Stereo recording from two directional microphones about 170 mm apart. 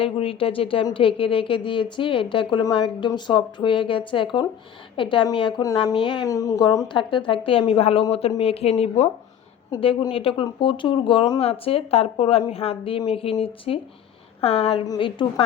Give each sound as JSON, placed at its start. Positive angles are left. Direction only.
{"t": 0.0, "sound": "speech", "side_deg": 35}
{"t": 9.7, "sound": "speech", "side_deg": 30}